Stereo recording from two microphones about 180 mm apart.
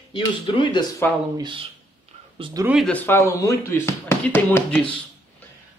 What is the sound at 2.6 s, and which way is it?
Speech, centre (ahead or behind).